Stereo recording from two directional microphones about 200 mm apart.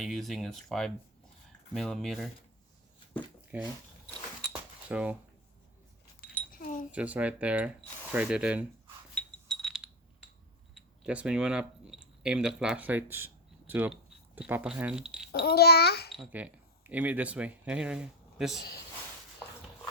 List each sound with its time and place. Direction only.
0.0 s speech: centre (ahead or behind)
3.5 s speech: 5° right (ahead or behind)
4.9 s speech: 5° right (ahead or behind)
6.5 s a sound: 45° left (ahead or behind)
6.9 s speech: 5° right (ahead or behind)
9.1 s a sound: 5° left (ahead or behind)
10.8 s speech: 5° right (ahead or behind)
15.3 s a child's voice: 50° left (ahead or behind)
16.1 s speech: 5° right (ahead or behind)